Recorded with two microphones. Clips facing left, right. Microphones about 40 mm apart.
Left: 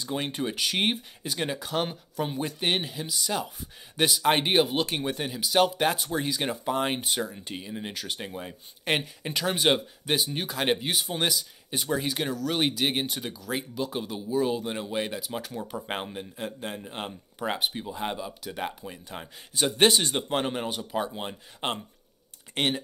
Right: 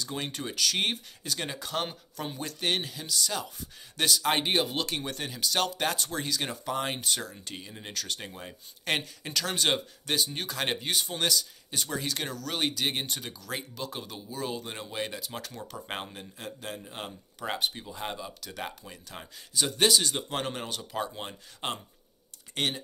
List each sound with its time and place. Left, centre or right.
0.0 s speech: left
19.5 s speech: left; by 21.7 s centre
22.5 s speech: left